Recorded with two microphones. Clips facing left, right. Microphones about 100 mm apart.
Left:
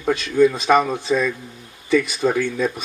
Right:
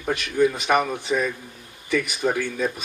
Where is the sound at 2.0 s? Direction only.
25° left (ahead or behind).